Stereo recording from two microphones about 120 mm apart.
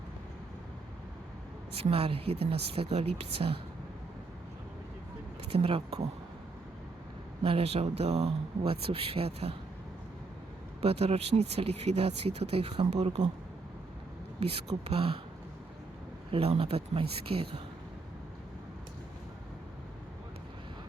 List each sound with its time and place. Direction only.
1.8 s speech: 55° right (ahead or behind)
5.5 s speech: 55° right (ahead or behind)
7.4 s speech: 55° right (ahead or behind)
10.8 s speech: 55° right (ahead or behind)
14.8 s speech: 50° right (ahead or behind)
16.3 s speech: 55° right (ahead or behind)